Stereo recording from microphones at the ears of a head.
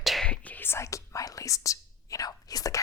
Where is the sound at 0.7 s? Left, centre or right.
Left.